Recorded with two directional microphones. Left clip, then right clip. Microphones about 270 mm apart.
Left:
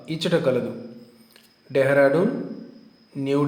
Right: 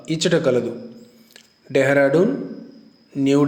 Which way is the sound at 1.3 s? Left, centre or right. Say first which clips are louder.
Right 4 dB; right.